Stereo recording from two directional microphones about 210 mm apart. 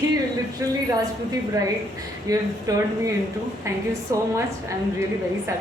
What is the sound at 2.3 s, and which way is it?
Speech, 15° right (ahead or behind).